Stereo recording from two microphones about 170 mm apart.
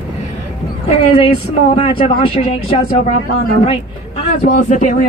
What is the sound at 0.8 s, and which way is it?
Speech, 35° left (ahead or behind).